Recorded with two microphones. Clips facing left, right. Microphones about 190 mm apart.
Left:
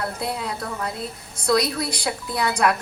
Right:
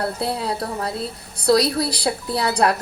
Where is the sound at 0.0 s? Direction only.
30° right (ahead or behind).